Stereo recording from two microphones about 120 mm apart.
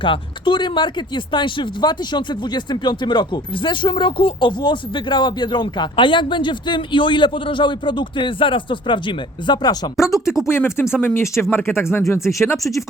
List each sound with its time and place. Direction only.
0.0 s speech: 45° left (ahead or behind)
10.5 s speech: 20° left (ahead or behind)